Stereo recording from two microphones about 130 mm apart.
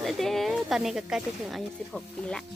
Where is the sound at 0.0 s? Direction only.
Centre (ahead or behind).